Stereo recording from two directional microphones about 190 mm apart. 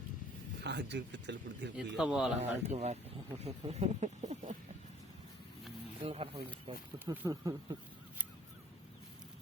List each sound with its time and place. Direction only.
0.6 s speech: 65° right (ahead or behind)
2.0 s a man's voice: centre (ahead or behind)
2.4 s speech: 35° right (ahead or behind)
6.0 s speech: 30° right (ahead or behind)
7.0 s speech: 10° right (ahead or behind)